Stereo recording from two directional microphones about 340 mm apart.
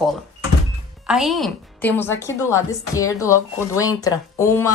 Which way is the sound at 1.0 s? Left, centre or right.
Centre.